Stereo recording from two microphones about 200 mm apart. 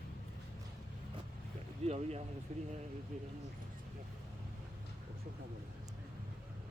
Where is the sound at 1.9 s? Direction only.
30° right (ahead or behind).